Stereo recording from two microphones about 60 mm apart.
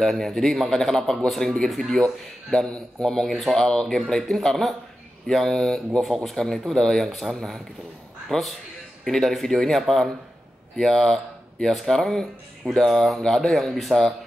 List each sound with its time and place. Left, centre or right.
0.0 s a man's voice: centre